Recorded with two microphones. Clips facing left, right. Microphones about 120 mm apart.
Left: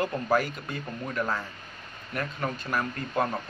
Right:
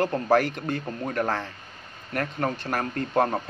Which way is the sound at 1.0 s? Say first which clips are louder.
Right 2 dB; 45° right (ahead or behind).